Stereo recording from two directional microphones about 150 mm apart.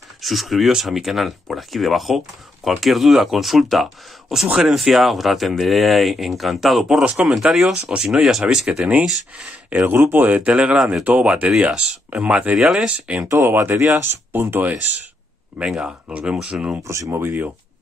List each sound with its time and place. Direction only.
0.2 s speech: centre (ahead or behind)
16.8 s speech: 20° right (ahead or behind)